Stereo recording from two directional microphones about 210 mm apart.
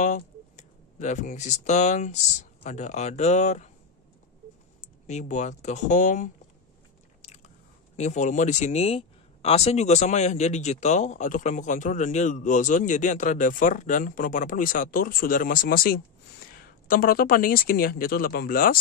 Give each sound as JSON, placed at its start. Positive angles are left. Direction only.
{"t": 0.0, "sound": "speech", "side_deg": 35}
{"t": 5.0, "sound": "speech", "side_deg": 35}
{"t": 7.9, "sound": "speech", "side_deg": 35}